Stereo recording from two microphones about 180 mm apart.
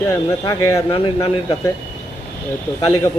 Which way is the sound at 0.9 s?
30° left (ahead or behind).